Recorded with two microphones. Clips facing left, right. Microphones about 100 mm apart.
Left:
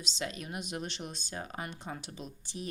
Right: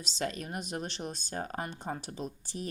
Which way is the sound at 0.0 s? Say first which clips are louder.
Right 3 dB; 40° right (ahead or behind).